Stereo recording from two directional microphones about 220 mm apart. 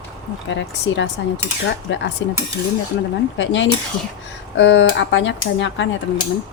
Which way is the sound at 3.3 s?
55° left (ahead or behind).